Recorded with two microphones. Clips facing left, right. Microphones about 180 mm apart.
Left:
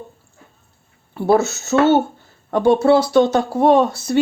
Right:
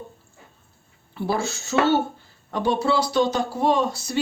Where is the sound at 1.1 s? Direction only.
50° left (ahead or behind).